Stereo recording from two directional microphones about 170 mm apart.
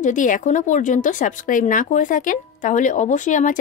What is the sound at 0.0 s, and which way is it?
A woman's voice, 50° left (ahead or behind).